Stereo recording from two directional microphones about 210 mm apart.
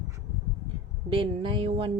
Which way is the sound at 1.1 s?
25° right (ahead or behind).